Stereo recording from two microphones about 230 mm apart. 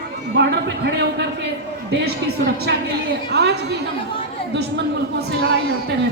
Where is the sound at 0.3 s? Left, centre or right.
Right.